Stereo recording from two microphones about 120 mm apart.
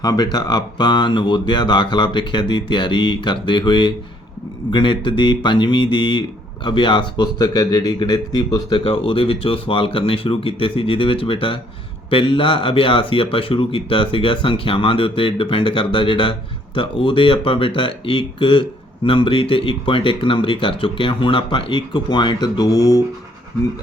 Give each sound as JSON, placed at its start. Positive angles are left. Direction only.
{"t": 0.0, "sound": "speech", "side_deg": 35}
{"t": 8.8, "sound": "speech", "side_deg": 50}